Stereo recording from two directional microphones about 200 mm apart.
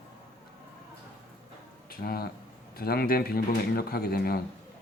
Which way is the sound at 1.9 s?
50° left (ahead or behind).